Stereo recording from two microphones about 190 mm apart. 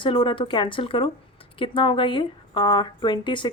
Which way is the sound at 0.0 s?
25° left (ahead or behind).